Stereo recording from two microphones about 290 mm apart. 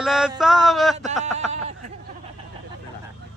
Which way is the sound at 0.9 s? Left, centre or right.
Right.